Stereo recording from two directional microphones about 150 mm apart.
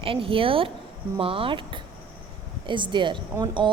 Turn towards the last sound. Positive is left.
turn(degrees=-30)  # may be behind; listen again after turning